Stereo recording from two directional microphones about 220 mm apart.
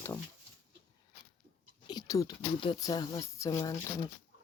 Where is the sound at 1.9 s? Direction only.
15° left (ahead or behind).